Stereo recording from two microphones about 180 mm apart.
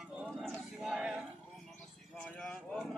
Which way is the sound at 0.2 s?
Centre (ahead or behind).